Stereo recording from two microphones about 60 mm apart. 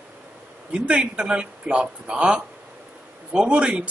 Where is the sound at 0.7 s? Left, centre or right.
Centre.